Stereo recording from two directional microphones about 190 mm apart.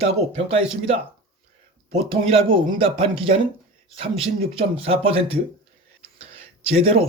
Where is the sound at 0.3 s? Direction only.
35° right (ahead or behind).